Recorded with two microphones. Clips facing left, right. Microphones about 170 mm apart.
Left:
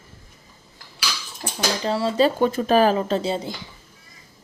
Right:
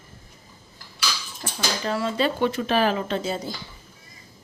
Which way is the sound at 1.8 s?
30° left (ahead or behind).